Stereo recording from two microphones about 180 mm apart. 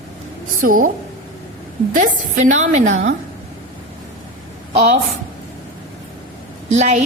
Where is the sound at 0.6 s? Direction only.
45° right (ahead or behind).